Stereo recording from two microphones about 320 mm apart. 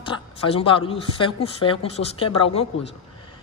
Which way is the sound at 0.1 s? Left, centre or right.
Centre.